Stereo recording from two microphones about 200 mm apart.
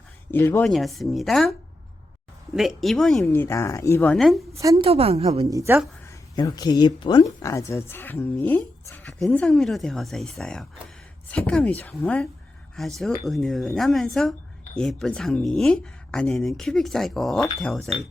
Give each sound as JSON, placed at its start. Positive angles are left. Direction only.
{"t": 0.3, "sound": "speech", "side_deg": 10}
{"t": 0.7, "sound": "speech", "side_deg": 0}
{"t": 2.6, "sound": "speech", "side_deg": 0}
{"t": 4.5, "sound": "a woman's voice", "side_deg": -15}
{"t": 4.9, "sound": "a woman's voice", "side_deg": -30}
{"t": 5.5, "sound": "a woman's voice", "side_deg": -15}
{"t": 6.3, "sound": "speech", "side_deg": 20}